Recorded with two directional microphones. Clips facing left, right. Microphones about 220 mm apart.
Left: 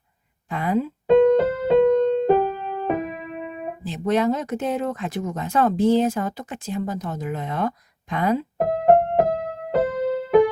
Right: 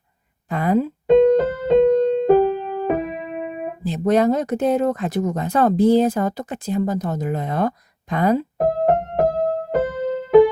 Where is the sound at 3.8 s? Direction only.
40° right (ahead or behind).